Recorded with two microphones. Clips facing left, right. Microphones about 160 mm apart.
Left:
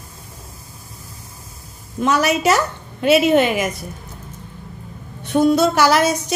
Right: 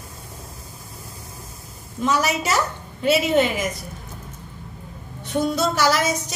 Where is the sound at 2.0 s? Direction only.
65° left (ahead or behind).